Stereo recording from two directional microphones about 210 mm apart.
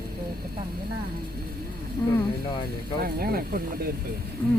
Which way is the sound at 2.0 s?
15° left (ahead or behind).